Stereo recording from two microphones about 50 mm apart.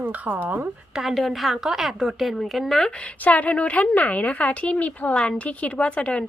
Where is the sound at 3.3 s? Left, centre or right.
Left.